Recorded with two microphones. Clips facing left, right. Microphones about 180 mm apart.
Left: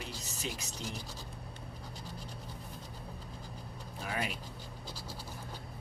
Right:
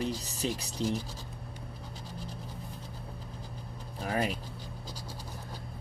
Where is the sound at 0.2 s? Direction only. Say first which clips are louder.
Right 7 dB; 35° right (ahead or behind).